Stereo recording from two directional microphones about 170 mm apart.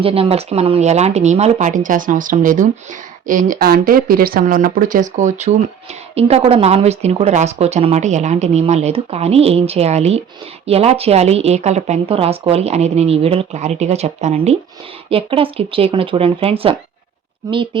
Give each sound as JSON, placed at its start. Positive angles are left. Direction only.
{"t": 0.0, "sound": "speech", "side_deg": -35}